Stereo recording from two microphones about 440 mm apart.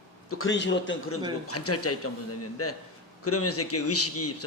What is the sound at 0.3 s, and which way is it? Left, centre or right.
A man's voice, left.